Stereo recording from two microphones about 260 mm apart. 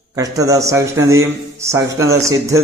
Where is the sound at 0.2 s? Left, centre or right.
Centre.